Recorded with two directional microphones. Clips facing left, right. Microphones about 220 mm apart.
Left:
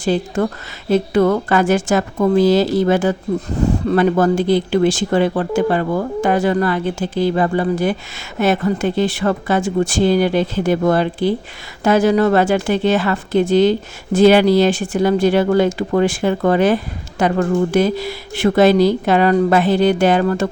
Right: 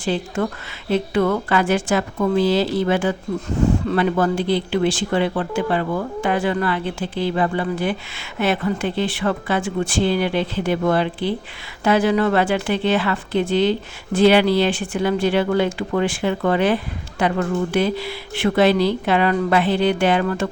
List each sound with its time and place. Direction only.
0.0 s a woman's voice: 40° left (ahead or behind)